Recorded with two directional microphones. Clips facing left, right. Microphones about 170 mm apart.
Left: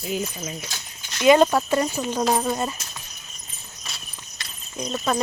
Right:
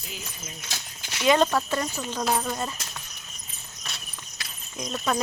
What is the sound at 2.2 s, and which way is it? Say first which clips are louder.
Speech: left 4 dB; 25° left (ahead or behind).